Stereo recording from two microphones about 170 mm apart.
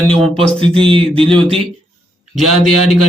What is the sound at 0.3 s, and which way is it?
Speech, 30° right (ahead or behind).